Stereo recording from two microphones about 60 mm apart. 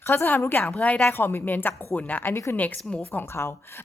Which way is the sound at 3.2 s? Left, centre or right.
Left.